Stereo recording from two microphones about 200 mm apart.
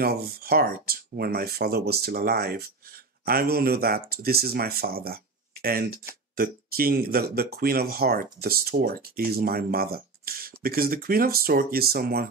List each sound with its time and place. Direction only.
0.0 s speech: 50° right (ahead or behind)